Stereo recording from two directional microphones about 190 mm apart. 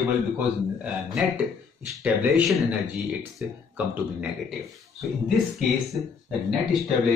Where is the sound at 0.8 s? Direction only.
5° right (ahead or behind).